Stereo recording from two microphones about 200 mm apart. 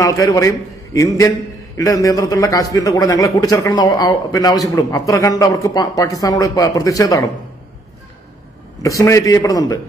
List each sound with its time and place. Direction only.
0.0 s a man's voice: 15° left (ahead or behind)
8.8 s a man's voice: 15° left (ahead or behind)